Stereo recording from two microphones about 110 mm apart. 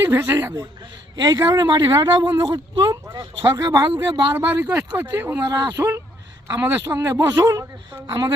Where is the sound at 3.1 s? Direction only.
45° right (ahead or behind).